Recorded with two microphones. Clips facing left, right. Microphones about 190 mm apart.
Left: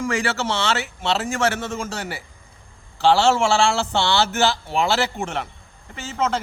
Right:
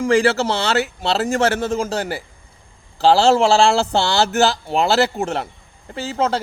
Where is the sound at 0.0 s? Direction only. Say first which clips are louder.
Right 7 dB; 30° right (ahead or behind).